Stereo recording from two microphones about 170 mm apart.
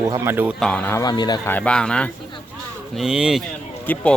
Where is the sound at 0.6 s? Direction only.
5° left (ahead or behind); by 1.4 s 25° left (ahead or behind).